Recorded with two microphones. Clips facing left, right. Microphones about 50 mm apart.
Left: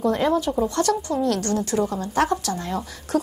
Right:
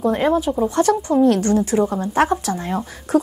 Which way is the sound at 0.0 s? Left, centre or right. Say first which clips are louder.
Right 3 dB; centre.